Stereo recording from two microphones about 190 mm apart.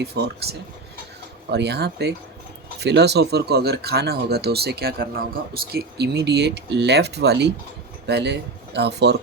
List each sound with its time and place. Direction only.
0.0 s speech: 60° right (ahead or behind)